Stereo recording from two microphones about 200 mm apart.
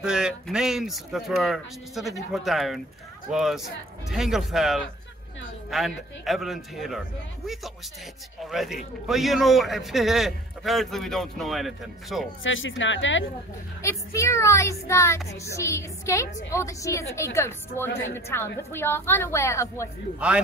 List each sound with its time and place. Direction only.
0.0 s a man's voice: 5° right (ahead or behind)
8.4 s a man's voice: centre (ahead or behind)
12.4 s speech: 75° left (ahead or behind)
13.8 s speech: 15° left (ahead or behind)